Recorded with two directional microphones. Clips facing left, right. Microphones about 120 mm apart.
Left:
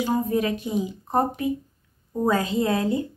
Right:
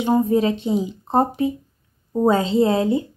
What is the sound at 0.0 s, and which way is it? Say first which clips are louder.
Speech: right 5 dB; 30° right (ahead or behind).